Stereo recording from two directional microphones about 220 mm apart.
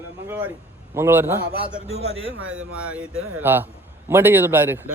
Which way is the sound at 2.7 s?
5° right (ahead or behind).